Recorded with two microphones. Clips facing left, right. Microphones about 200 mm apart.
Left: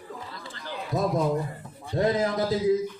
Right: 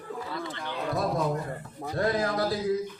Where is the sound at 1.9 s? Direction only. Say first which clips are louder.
Left 3 dB; 20° left (ahead or behind).